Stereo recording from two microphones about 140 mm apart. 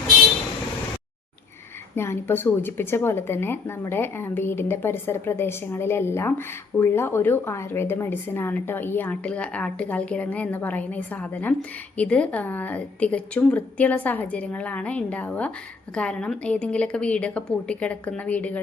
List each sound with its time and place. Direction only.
2.0 s a woman's voice: 15° left (ahead or behind)